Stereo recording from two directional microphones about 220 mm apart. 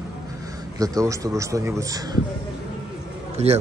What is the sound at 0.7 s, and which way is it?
Speech, 15° right (ahead or behind).